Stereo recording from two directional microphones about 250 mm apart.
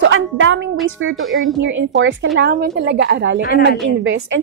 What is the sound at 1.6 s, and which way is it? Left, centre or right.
Speech, right.